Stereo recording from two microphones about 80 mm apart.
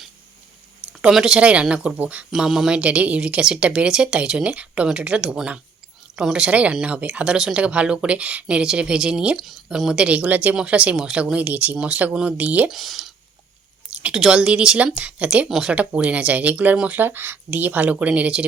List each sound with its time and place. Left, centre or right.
1.0 s speech: centre
2.3 s speech: centre
12.7 s speech: centre
13.9 s a sound: centre
14.2 s speech: centre
15.4 s speech: centre
15.7 s speech: centre